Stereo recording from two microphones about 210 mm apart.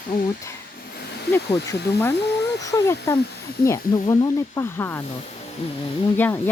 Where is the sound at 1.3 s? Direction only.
15° left (ahead or behind).